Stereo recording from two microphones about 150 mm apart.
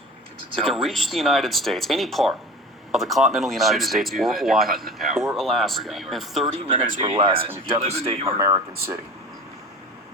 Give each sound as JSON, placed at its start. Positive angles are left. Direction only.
{"t": 0.6, "sound": "speech", "side_deg": 0}
{"t": 6.7, "sound": "speech", "side_deg": -35}
{"t": 7.8, "sound": "speech", "side_deg": -45}
{"t": 8.3, "sound": "speech", "side_deg": -20}